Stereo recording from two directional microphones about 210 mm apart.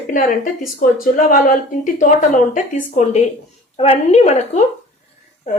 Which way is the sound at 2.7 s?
35° left (ahead or behind).